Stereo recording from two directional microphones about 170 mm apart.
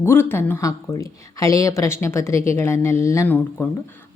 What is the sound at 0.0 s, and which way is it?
Speech, 15° left (ahead or behind).